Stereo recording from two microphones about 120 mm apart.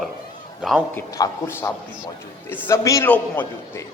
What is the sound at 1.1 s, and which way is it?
A man's voice, 25° left (ahead or behind).